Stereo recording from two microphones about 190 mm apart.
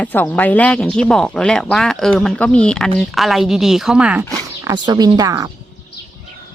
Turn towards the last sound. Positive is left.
turn(degrees=-20)  # may be behind; listen again after turning